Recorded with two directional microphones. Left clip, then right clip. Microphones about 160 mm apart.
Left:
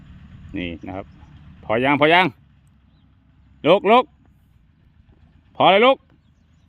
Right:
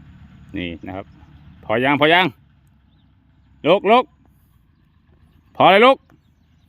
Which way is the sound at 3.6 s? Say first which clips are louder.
Even; centre (ahead or behind).